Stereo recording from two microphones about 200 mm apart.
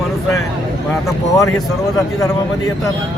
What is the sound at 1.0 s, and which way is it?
Speech, 15° left (ahead or behind).